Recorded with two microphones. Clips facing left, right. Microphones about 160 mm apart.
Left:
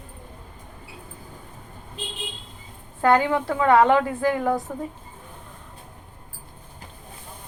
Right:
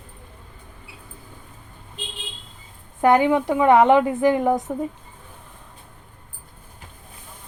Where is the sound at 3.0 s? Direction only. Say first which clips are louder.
Right 3 dB; 15° right (ahead or behind).